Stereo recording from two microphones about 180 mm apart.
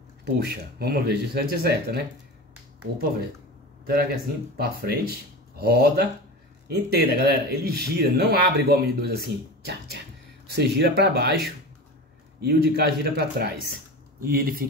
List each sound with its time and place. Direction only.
0.7 s speech: 60° right (ahead or behind)
4.6 s speech: 60° right (ahead or behind)
12.4 s speech: 65° right (ahead or behind)